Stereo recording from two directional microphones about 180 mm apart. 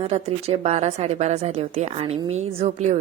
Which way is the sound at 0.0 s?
35° right (ahead or behind).